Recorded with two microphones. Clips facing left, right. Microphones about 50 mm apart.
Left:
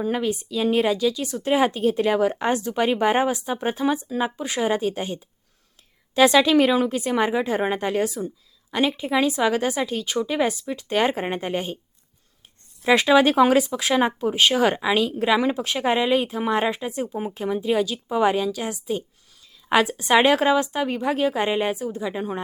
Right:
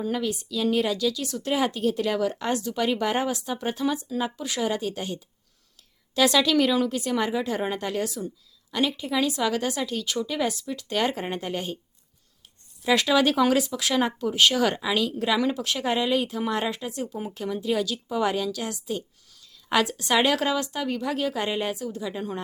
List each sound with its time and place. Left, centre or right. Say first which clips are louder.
0.0 s speech: left 4 dB; left
12.8 s speech: left 5 dB; left